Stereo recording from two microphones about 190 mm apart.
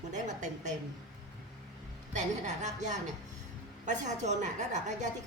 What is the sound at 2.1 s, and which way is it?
A woman's voice, 40° right (ahead or behind).